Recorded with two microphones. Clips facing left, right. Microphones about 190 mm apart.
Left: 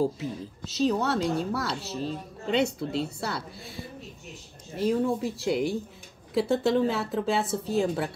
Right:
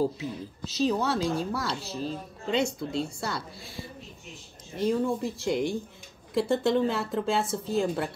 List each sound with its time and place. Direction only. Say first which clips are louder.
0.0 s speech: left 1 dB; centre (ahead or behind)
4.7 s speech: left 1 dB; 5° left (ahead or behind)